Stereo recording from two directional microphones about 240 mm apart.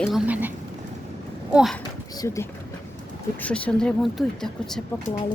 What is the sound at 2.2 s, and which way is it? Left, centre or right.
Speech, centre.